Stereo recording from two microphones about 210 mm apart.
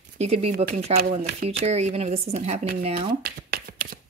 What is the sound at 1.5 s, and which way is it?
Speech, 30° right (ahead or behind).